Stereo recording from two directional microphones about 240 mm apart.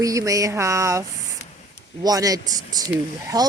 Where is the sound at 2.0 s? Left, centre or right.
Centre.